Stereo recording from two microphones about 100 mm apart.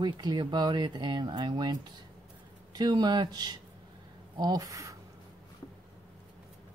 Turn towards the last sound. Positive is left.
turn(degrees=-30)  # may be behind; listen again after turning